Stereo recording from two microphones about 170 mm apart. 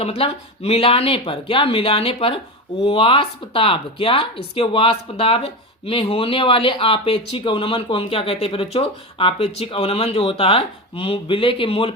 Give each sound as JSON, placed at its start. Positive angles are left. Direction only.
{"t": 0.0, "sound": "speech", "side_deg": 35}